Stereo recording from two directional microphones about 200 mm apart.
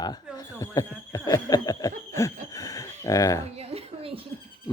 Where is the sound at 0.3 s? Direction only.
15° left (ahead or behind).